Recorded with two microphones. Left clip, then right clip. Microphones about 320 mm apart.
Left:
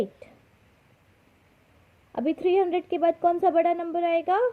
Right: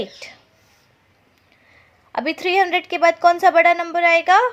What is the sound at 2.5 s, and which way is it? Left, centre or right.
Speech, centre.